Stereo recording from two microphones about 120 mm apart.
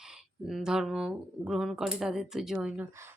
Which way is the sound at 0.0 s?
5° right (ahead or behind).